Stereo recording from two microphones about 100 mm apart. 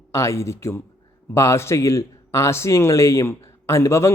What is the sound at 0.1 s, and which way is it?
A man's voice, 30° left (ahead or behind).